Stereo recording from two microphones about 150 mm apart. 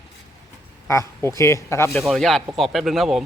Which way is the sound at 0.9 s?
20° left (ahead or behind).